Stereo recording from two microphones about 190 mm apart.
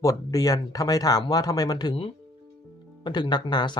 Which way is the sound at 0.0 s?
20° left (ahead or behind).